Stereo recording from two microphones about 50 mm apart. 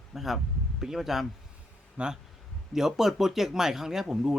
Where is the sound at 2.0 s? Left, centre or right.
Right.